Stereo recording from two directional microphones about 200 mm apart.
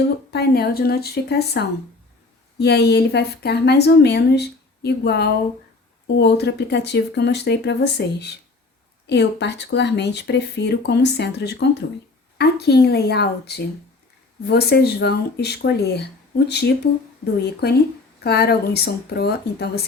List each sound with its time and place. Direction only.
0.3 s a woman's voice: 55° left (ahead or behind)